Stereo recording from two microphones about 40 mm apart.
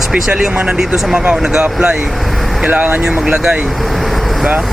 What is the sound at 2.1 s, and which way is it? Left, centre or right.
Vehicle, centre.